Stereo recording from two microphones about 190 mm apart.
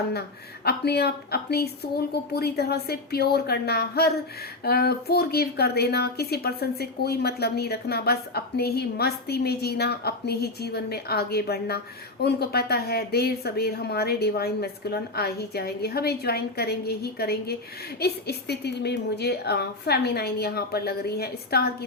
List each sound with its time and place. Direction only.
0.1 s a woman's voice: 55° left (ahead or behind)